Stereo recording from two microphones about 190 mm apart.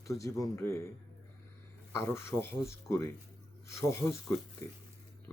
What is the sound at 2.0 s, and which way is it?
Speech, 15° left (ahead or behind).